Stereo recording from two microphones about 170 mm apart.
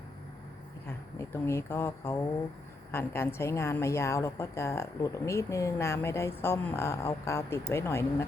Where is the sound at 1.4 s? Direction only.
15° left (ahead or behind).